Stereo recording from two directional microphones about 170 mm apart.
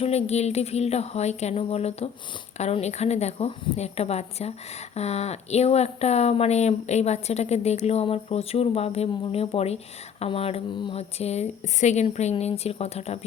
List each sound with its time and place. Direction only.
0.0 s speech: 40° left (ahead or behind)